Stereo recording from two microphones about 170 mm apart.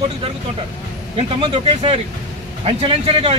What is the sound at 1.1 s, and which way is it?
Speech, 35° right (ahead or behind).